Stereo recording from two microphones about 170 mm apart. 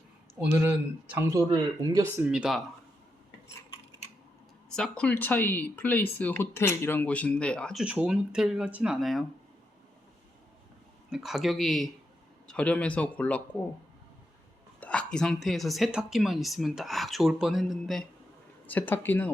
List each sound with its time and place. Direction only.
0.3 s speech: 10° right (ahead or behind)
2.2 s speech: 5° right (ahead or behind)
4.7 s speech: 5° left (ahead or behind)
11.1 s speech: centre (ahead or behind)
14.8 s speech: 5° left (ahead or behind)